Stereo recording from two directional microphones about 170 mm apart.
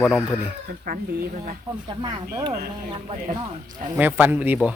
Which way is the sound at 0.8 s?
60° right (ahead or behind).